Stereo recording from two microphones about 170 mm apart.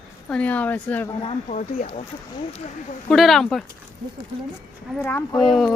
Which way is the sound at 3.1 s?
Centre (ahead or behind).